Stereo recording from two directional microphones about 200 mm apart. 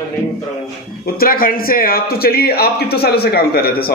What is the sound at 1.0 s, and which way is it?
A man's voice, 50° left (ahead or behind).